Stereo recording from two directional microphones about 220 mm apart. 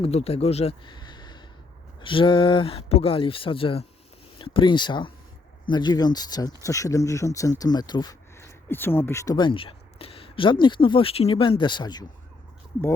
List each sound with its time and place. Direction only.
0.0 s speech: 25° left (ahead or behind)